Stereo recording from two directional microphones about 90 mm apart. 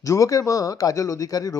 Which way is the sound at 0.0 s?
35° left (ahead or behind).